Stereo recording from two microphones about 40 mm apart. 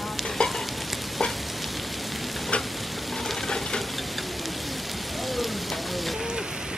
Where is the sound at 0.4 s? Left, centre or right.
Centre.